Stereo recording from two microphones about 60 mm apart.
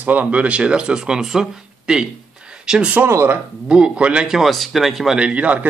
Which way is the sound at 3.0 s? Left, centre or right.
Right.